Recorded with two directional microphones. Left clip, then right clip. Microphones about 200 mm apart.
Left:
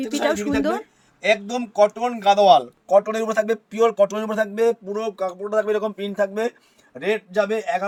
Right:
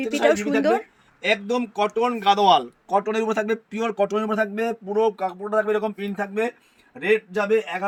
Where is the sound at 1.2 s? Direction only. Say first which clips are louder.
Left 2 dB; 55° left (ahead or behind); by 6.1 s 25° left (ahead or behind).